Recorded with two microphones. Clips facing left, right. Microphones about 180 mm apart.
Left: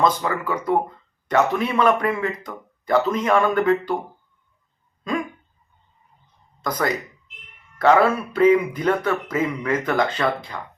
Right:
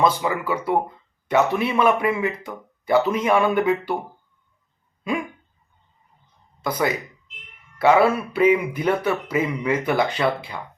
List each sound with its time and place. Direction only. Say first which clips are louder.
0.0 s speech: even; 10° right (ahead or behind)
6.6 s speech: right 1 dB; 10° right (ahead or behind)